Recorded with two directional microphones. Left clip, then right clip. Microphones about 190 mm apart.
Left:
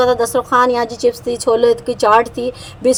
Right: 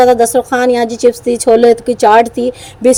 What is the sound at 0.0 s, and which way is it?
A woman's voice, 25° right (ahead or behind).